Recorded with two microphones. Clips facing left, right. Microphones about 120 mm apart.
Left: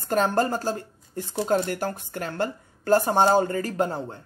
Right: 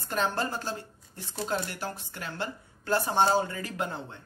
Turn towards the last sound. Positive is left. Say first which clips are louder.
# left 8 dB
turn(degrees=40)  # may be behind; listen again after turning